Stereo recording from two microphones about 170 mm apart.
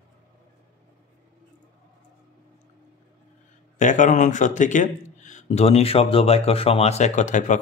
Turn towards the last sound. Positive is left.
turn(degrees=45)  # may be behind; listen again after turning